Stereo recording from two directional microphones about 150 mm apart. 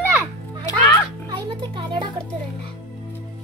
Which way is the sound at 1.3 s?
35° right (ahead or behind).